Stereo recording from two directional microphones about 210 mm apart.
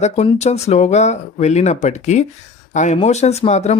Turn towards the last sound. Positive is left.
turn(degrees=30)  # may be behind; listen again after turning